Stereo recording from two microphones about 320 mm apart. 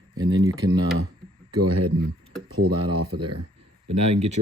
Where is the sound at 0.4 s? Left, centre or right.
Centre.